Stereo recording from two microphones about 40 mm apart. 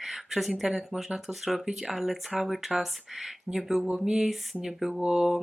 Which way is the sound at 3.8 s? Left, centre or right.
Right.